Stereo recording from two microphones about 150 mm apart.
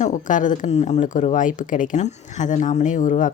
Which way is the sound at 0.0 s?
60° left (ahead or behind).